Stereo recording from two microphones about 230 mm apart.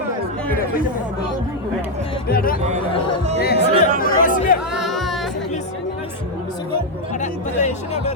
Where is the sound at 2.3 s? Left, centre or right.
Left.